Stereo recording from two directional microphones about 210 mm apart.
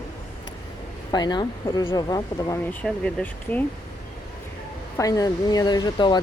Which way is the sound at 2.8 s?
5° left (ahead or behind).